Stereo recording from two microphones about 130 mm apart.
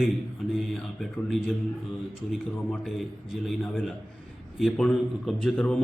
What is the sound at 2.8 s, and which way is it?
A man's voice, centre (ahead or behind).